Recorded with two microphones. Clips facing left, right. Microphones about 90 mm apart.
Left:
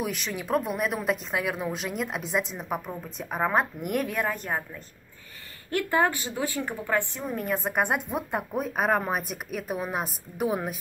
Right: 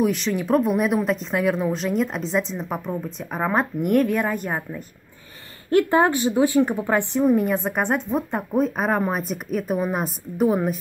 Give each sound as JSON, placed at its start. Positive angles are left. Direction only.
{"t": 0.0, "sound": "speech", "side_deg": 0}
{"t": 5.7, "sound": "speech", "side_deg": -25}
{"t": 7.2, "sound": "speech", "side_deg": -5}